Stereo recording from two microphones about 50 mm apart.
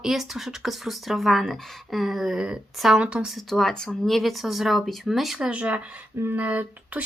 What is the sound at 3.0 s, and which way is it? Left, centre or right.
Speech, right.